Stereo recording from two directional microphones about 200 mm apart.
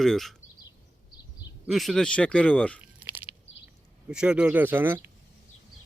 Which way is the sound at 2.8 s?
10° right (ahead or behind).